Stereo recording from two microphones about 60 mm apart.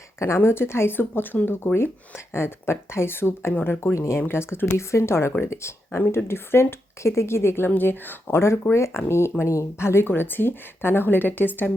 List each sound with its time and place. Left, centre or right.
0.3 s speech: left
1.7 s speech: left
3.9 s speech: left
4.3 s speech: left